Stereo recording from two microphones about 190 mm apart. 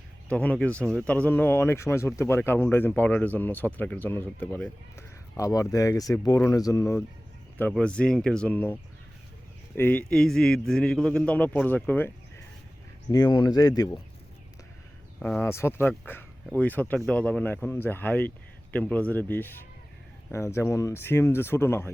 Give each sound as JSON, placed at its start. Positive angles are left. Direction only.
{"t": 0.3, "sound": "speech", "side_deg": 5}
{"t": 0.8, "sound": "speech", "side_deg": -15}
{"t": 1.0, "sound": "speech", "side_deg": 5}
{"t": 7.7, "sound": "speech", "side_deg": 5}
{"t": 13.1, "sound": "speech", "side_deg": 20}
{"t": 15.2, "sound": "speech", "side_deg": 10}